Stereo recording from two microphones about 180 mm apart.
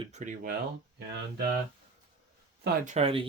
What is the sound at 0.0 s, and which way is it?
Speech, 40° right (ahead or behind).